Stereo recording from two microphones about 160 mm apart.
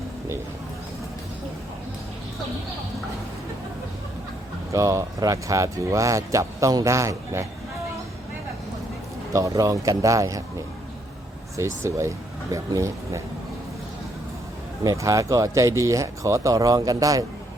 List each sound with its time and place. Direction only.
4.7 s speech: 20° right (ahead or behind)
9.3 s speech: 20° right (ahead or behind)
11.5 s speech: 20° right (ahead or behind)
14.8 s speech: 20° right (ahead or behind)